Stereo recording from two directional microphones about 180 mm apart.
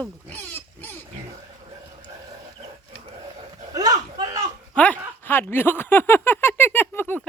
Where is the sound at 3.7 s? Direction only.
20° right (ahead or behind).